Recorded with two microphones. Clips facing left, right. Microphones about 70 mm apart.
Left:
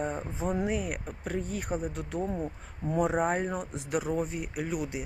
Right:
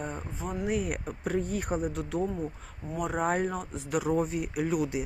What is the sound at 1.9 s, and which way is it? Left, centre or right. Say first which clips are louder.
Speech: right 2 dB; centre.